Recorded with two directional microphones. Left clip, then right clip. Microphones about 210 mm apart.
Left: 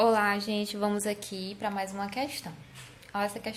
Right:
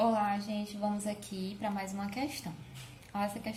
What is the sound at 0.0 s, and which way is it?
A woman's voice, 20° left (ahead or behind).